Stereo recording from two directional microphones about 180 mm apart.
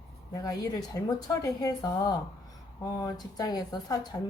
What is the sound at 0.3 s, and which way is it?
Speech, 20° left (ahead or behind).